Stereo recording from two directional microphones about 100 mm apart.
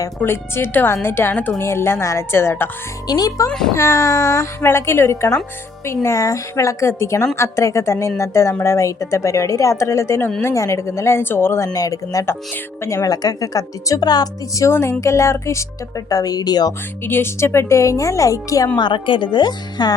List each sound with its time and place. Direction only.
0.2 s speech: 25° left (ahead or behind)
3.1 s a woman's voice: 40° left (ahead or behind)
17.0 s speech: 20° left (ahead or behind)
18.8 s speech: 55° left (ahead or behind)